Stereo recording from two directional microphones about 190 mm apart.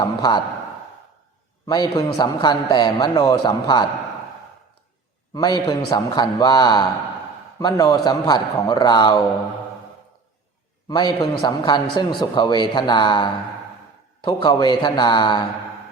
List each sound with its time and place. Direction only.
0.0 s a man's voice: 20° left (ahead or behind)
1.6 s a man's voice: 20° left (ahead or behind)
5.3 s a man's voice: 20° left (ahead or behind)
10.8 s a man's voice: 20° left (ahead or behind)